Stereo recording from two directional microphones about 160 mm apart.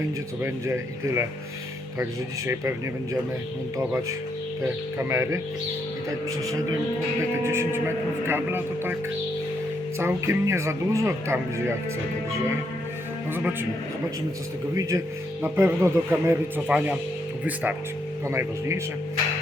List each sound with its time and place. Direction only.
0.4 s speech: 15° right (ahead or behind)
2.5 s speech: 15° right (ahead or behind)
4.6 s a man's voice: 15° right (ahead or behind)
10.0 s speech: 15° right (ahead or behind)
13.3 s speech: 10° right (ahead or behind)
14.8 s speech: 20° right (ahead or behind)